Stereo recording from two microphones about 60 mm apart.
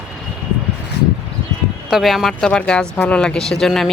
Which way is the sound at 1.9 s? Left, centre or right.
Centre.